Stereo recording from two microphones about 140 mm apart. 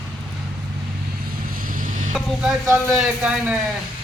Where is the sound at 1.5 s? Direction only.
80° right.